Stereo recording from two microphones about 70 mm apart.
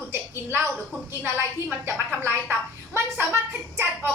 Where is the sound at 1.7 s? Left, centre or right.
Right.